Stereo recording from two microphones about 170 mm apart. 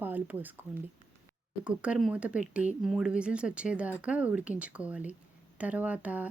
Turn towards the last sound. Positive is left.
turn(degrees=-10)  # may be behind; listen again after turning